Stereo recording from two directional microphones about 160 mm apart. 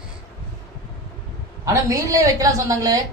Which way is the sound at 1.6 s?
20° right (ahead or behind).